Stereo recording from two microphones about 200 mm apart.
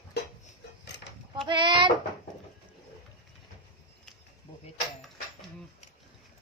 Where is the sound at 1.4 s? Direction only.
25° right (ahead or behind).